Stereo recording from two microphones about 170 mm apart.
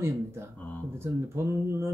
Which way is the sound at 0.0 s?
15° right (ahead or behind).